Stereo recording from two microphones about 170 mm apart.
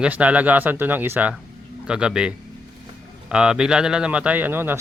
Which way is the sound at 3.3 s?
5° right (ahead or behind).